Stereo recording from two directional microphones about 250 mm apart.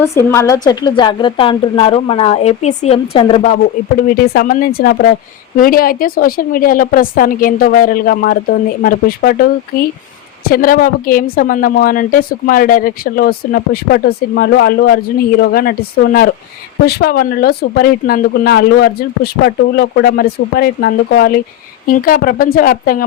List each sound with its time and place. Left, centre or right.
0.0 s a woman's voice: centre
4.3 s a woman's voice: left
16.8 s a woman's voice: left